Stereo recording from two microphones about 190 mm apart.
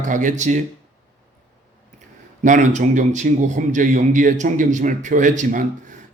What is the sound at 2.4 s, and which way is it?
A man's voice, 40° right (ahead or behind).